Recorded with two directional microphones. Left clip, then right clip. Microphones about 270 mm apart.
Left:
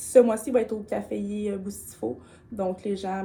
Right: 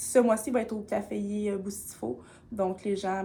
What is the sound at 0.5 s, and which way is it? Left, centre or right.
Speech, centre.